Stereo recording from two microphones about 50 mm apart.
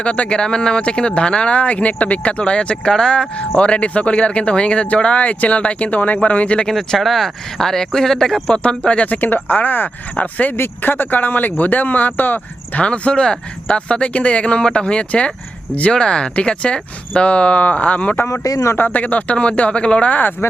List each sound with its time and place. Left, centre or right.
0.0 s speech: left
6.7 s speech: centre
8.4 s speech: centre
9.0 s speech: left
10.5 s speech: left
12.8 s speech: left
18.3 s speech: left
18.8 s speech: left